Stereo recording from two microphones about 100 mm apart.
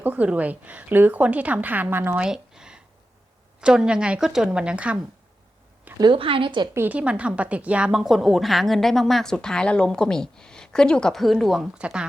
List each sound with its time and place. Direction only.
0.0 s a woman's voice: 15° right (ahead or behind)
2.1 s a sound: 5° right (ahead or behind)
3.6 s a woman's voice: 10° right (ahead or behind)
6.0 s a woman's voice: 60° right (ahead or behind)
6.7 s a woman's voice: 15° right (ahead or behind)